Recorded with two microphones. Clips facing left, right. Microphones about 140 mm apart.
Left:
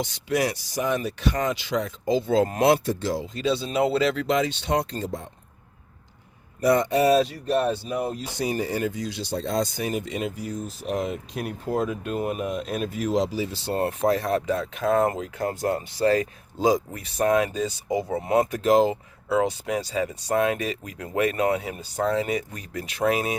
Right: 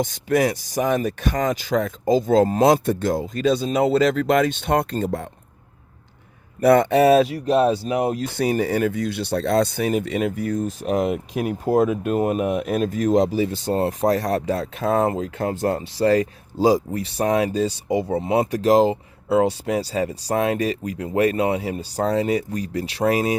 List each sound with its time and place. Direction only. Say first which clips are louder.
0.0 s speech: right 5 dB; 50° right (ahead or behind)
2.8 s speech: right 5 dB; 55° right (ahead or behind)
6.6 s speech: right 5 dB; 60° right (ahead or behind)
7.4 s speech: right 5 dB; 85° right
8.3 s speech: right 6 dB; 55° right (ahead or behind)
11.6 s speech: right 8 dB; 40° right (ahead or behind)
13.7 s speech: right 2 dB; 30° right (ahead or behind)
18.5 s speech: right 6 dB; 35° right (ahead or behind)